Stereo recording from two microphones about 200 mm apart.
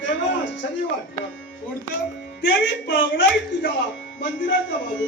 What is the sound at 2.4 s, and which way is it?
Speech, 60° left (ahead or behind).